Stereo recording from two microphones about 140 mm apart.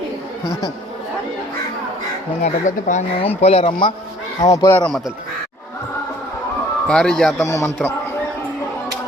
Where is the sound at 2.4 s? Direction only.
60° left (ahead or behind).